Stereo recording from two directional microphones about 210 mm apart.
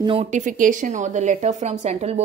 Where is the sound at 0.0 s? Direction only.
25° right (ahead or behind).